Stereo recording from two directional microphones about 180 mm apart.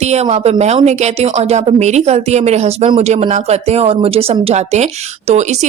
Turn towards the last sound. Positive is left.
turn(degrees=-40)  # may be behind; listen again after turning